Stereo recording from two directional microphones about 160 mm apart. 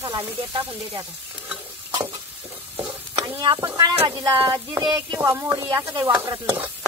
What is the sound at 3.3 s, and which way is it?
Speech, 30° right (ahead or behind).